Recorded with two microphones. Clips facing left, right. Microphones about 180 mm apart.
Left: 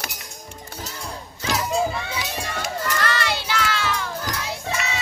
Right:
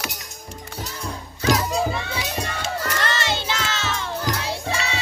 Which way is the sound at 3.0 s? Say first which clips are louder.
Even; 25° right (ahead or behind).